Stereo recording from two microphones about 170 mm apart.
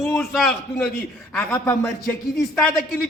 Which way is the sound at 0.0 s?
Centre (ahead or behind).